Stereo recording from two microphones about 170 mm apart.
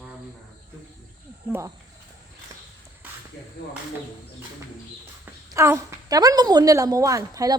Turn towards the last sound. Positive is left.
turn(degrees=-20)  # may be behind; listen again after turning